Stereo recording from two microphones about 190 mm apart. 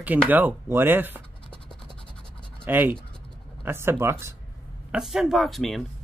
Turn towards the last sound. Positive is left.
turn(degrees=0)  # may be behind; listen again after turning